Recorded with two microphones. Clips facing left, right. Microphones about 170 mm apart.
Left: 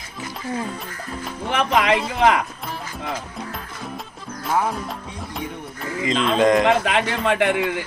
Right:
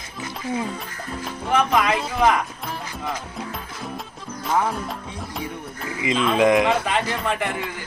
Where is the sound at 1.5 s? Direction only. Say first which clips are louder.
Left 1 dB; 90° left.